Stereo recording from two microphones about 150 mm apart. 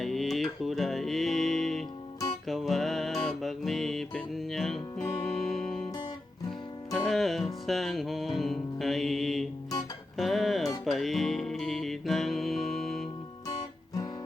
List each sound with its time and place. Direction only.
0.0 s music: centre (ahead or behind)
6.9 s music: centre (ahead or behind)